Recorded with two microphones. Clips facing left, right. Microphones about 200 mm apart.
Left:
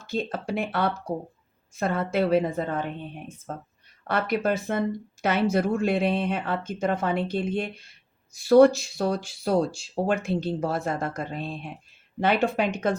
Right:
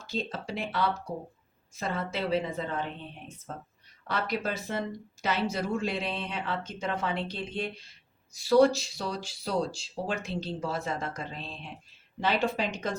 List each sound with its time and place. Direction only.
0.1 s speech: 55° left (ahead or behind)